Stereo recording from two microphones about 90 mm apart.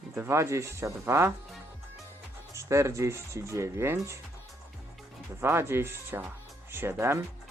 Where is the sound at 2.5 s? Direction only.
35° right (ahead or behind).